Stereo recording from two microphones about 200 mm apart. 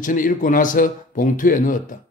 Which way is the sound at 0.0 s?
40° left (ahead or behind).